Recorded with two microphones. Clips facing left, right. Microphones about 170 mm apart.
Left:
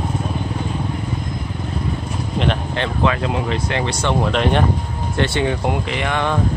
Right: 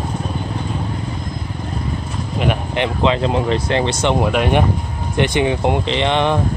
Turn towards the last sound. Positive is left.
turn(degrees=-20)  # may be behind; listen again after turning